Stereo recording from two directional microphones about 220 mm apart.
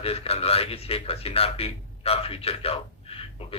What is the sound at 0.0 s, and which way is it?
A man's voice, 25° left (ahead or behind).